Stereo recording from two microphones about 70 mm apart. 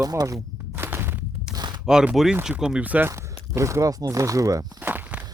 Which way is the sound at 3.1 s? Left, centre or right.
Right.